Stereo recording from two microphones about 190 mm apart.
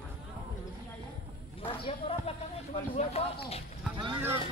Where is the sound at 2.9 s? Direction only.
30° left (ahead or behind).